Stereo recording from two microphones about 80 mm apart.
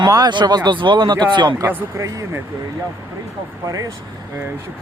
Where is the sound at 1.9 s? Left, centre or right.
Right.